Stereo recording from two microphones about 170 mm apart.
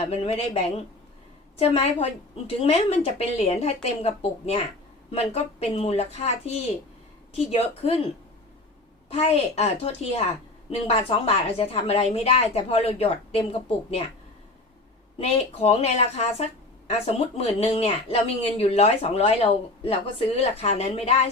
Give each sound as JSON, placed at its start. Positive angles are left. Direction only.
{"t": 0.1, "sound": "speech", "side_deg": 35}
{"t": 9.0, "sound": "speech", "side_deg": 40}
{"t": 15.2, "sound": "speech", "side_deg": 35}